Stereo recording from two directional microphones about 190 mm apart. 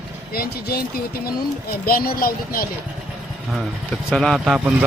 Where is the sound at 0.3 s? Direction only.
55° left (ahead or behind).